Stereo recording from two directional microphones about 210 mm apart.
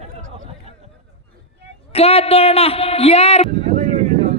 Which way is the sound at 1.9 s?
30° left (ahead or behind).